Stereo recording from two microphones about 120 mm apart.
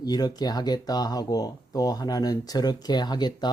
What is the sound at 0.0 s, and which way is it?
Speech, 35° left (ahead or behind).